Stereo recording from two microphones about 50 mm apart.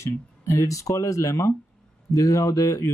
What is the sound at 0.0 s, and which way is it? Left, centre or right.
Speech, left.